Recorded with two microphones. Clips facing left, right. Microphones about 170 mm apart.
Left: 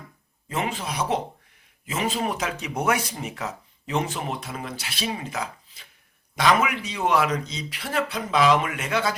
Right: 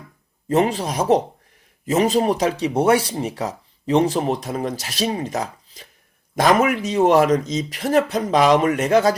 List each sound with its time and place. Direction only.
0.4 s speech: 40° right (ahead or behind)